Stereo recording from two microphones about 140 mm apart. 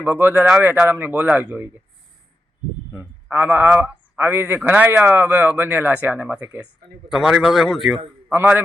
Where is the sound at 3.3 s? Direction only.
15° right (ahead or behind).